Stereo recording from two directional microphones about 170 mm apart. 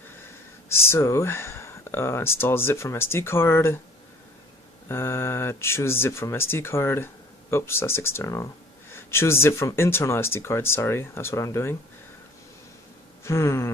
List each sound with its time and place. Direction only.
0.7 s speech: 15° left (ahead or behind)
4.8 s speech: 15° left (ahead or behind)
13.2 s a sound: 15° left (ahead or behind)